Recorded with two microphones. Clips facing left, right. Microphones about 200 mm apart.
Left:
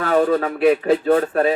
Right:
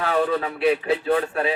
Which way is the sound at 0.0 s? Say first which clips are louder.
Left 5 dB; 45° left (ahead or behind).